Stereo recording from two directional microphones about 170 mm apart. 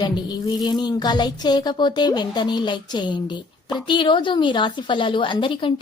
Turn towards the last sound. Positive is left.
turn(degrees=30)  # may be behind; listen again after turning